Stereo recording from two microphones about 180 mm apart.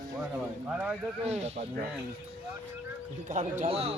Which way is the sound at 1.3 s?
35° right (ahead or behind).